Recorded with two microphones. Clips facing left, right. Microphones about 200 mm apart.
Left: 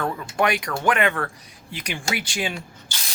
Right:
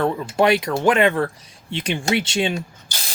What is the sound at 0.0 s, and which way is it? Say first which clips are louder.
Speech: right 5 dB; 25° right (ahead or behind).